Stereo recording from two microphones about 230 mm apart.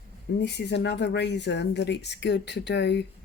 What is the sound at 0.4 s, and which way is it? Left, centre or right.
Speech, left.